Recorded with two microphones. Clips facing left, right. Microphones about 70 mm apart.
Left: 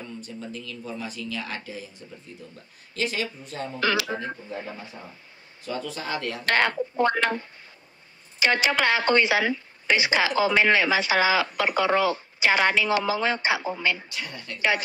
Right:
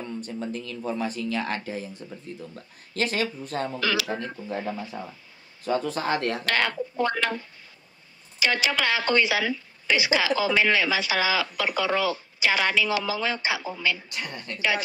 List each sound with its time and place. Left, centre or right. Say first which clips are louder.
0.2 s speech: right 4 dB; right
3.8 s a woman's voice: left 5 dB; left
4.5 s speech: right 4 dB; right
4.9 s speech: right 6 dB; right
5.7 s speech: right 5 dB; right
6.4 s a woman's voice: left 3 dB; left
14.1 s a woman's voice: right 1 dB; right